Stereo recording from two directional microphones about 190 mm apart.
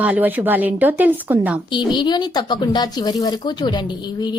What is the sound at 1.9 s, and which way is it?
Speech, 25° left (ahead or behind).